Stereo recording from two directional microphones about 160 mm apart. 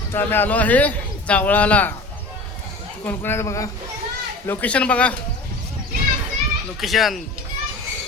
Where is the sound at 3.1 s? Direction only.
15° left (ahead or behind).